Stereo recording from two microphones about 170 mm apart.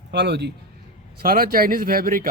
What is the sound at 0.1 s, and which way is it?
Speech, 80° right.